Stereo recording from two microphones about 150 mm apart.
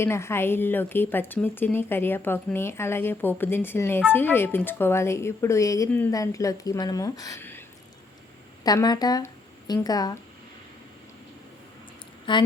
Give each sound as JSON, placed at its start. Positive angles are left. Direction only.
{"t": 0.0, "sound": "a woman's voice", "side_deg": 15}
{"t": 8.6, "sound": "speech", "side_deg": 25}
{"t": 12.3, "sound": "a woman's voice", "side_deg": 35}